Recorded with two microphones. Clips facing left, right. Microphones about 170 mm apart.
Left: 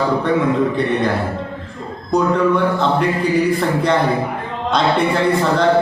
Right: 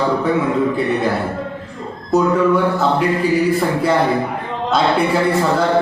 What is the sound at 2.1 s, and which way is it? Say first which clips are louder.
Speech: right 1 dB; 5° right (ahead or behind).